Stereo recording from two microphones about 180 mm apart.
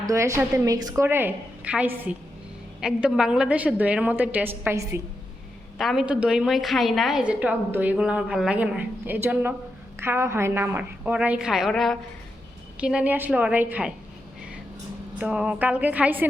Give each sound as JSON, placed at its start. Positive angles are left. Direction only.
{"t": 0.0, "sound": "a woman's voice", "side_deg": -15}
{"t": 5.7, "sound": "a woman's voice", "side_deg": 0}
{"t": 15.2, "sound": "a woman's voice", "side_deg": -5}